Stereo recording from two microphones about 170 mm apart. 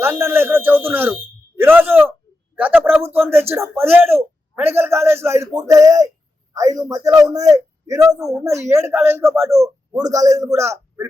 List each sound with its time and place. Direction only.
0.0 s a man's voice: 15° right (ahead or behind)